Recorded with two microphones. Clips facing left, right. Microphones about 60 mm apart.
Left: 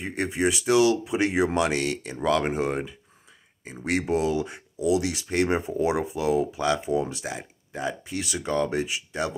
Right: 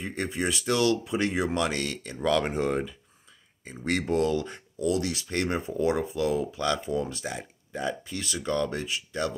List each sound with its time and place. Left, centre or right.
0.0 s speech: centre
2.3 s speech: centre
2.7 s speech: left
8.0 s speech: left